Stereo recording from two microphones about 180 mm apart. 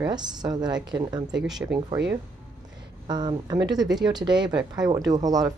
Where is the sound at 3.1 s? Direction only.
25° right (ahead or behind).